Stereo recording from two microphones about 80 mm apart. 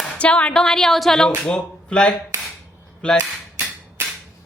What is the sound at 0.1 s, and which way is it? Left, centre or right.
A woman's voice, centre.